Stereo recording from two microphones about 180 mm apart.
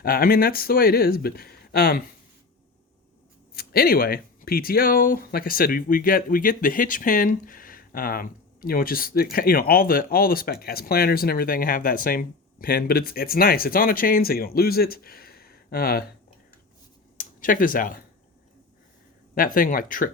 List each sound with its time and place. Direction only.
0.0 s speech: 55° left (ahead or behind)
3.5 s speech: 55° left (ahead or behind)
17.2 s speech: 50° left (ahead or behind)
19.3 s speech: 50° left (ahead or behind)